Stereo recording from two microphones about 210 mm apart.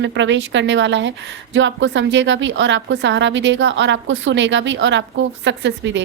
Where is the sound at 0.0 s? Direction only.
60° right (ahead or behind).